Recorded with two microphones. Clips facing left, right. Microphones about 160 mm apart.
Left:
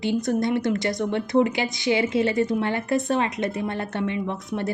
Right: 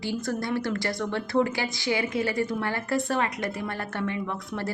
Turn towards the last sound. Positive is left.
turn(degrees=20)  # may be behind; listen again after turning